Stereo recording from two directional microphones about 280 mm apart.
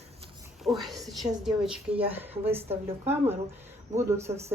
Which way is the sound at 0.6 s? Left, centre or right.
Centre.